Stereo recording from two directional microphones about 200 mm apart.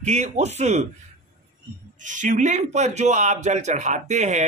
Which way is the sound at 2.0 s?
40° right (ahead or behind).